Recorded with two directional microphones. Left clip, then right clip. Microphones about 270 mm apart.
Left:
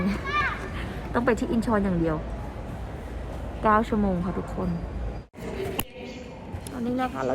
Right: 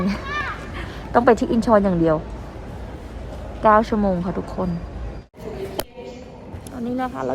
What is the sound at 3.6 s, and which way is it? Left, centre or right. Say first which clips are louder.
A woman's voice: right 7 dB; centre.